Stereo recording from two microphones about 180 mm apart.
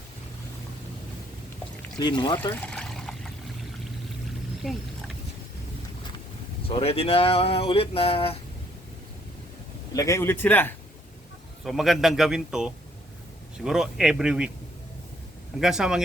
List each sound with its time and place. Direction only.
2.0 s speech: 25° left (ahead or behind)
2.6 s pour: 5° left (ahead or behind)
4.6 s wild animals: centre (ahead or behind)
6.7 s speech: 30° left (ahead or behind)
9.9 s speech: 20° left (ahead or behind)
11.6 s a man's voice: centre (ahead or behind)
15.6 s a man's voice: 5° right (ahead or behind)